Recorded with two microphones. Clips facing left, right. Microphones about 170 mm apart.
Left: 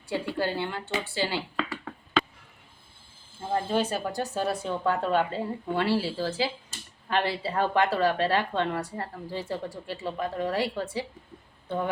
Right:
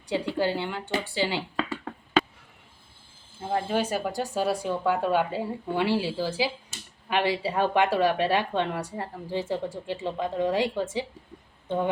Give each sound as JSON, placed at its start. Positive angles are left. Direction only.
{"t": 0.1, "sound": "a woman's voice", "side_deg": -15}
{"t": 1.5, "sound": "a sound", "side_deg": -40}
{"t": 3.5, "sound": "a woman's voice", "side_deg": -15}